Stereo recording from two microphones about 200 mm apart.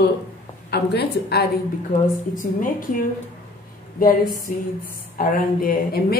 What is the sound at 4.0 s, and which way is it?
A woman's voice, 45° left (ahead or behind).